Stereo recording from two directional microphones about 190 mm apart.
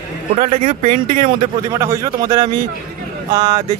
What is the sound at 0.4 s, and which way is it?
A man's voice, 40° right (ahead or behind).